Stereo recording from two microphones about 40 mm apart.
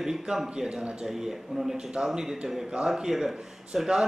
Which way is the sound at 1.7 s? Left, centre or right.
Centre.